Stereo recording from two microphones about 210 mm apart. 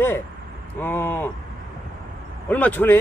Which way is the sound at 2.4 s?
5° left (ahead or behind).